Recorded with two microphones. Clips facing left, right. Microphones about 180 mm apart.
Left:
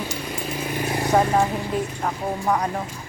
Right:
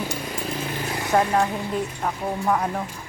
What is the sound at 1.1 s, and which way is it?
Speech, centre (ahead or behind).